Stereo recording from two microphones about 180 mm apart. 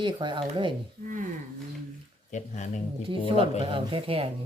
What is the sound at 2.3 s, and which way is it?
Speech, 40° left (ahead or behind).